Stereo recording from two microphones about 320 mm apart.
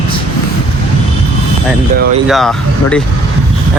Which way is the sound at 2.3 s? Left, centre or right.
Centre.